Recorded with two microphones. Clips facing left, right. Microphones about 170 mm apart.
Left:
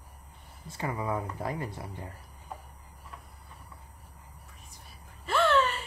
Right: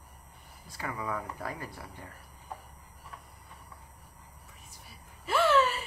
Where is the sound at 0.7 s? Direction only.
25° left (ahead or behind).